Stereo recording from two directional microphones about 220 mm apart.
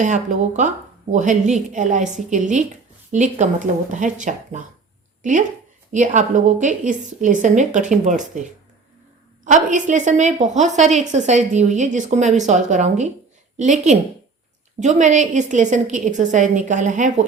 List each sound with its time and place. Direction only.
0.0 s a woman's voice: 35° right (ahead or behind)
5.9 s a woman's voice: 35° right (ahead or behind)